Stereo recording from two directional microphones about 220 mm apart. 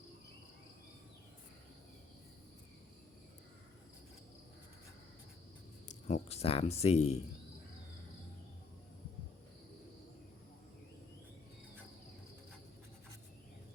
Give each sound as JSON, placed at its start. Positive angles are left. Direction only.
{"t": 5.9, "sound": "speech", "side_deg": 30}